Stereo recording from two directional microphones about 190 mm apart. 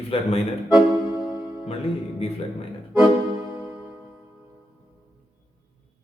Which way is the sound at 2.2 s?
30° left (ahead or behind).